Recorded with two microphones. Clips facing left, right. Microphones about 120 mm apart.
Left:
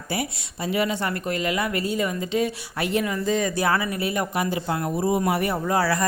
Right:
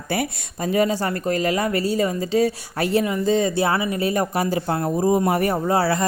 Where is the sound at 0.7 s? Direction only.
40° right (ahead or behind).